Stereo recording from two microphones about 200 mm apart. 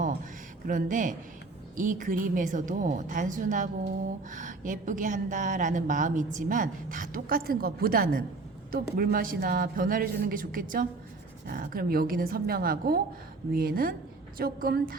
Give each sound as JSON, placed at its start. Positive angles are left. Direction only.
{"t": 0.7, "sound": "a woman's voice", "side_deg": -40}